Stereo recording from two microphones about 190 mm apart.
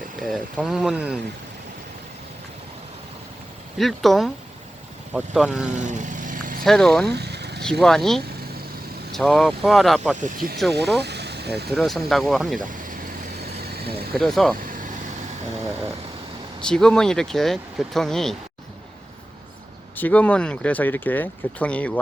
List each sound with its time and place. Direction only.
0.2 s speech: centre (ahead or behind)
3.8 s speech: centre (ahead or behind)
5.8 s vehicle: 40° right (ahead or behind)
6.7 s speech: centre (ahead or behind)
7.2 s vehicle: 60° right (ahead or behind)
7.6 s speech: 5° left (ahead or behind)
10.2 s speech: 50° right (ahead or behind)
11.0 s vehicle: 60° right (ahead or behind)
11.7 s speech: centre (ahead or behind)
14.2 s speech: centre (ahead or behind)
16.6 s speech: 5° left (ahead or behind)
20.0 s speech: 10° left (ahead or behind)